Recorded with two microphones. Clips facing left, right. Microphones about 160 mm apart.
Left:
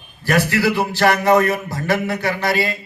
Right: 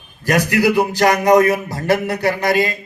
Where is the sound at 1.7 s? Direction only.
40° right (ahead or behind).